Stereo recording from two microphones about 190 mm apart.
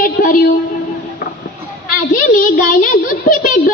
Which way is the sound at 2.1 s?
45° left (ahead or behind).